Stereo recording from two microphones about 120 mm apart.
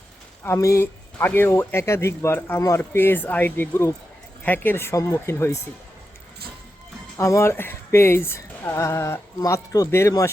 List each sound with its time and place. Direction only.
0.4 s speech: 25° left (ahead or behind)
7.2 s speech: 25° left (ahead or behind)